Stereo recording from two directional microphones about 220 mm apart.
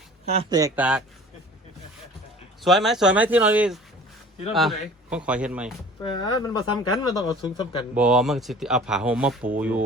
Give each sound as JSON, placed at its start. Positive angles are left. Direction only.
{"t": 0.5, "sound": "speech", "side_deg": -15}
{"t": 2.6, "sound": "speech", "side_deg": 0}
{"t": 6.1, "sound": "speech", "side_deg": 20}
{"t": 7.9, "sound": "speech", "side_deg": -5}